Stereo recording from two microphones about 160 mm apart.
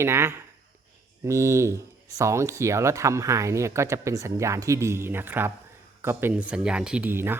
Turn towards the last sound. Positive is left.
turn(degrees=-10)  # may be behind; listen again after turning